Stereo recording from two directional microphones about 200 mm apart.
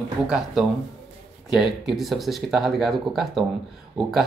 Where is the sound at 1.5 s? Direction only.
Centre (ahead or behind).